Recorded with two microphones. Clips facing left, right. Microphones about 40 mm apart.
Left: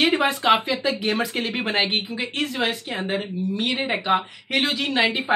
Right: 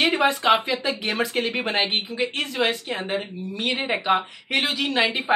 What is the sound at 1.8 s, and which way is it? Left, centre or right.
Speech, right.